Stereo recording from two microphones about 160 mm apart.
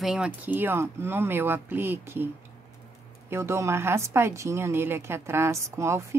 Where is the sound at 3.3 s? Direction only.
15° right (ahead or behind).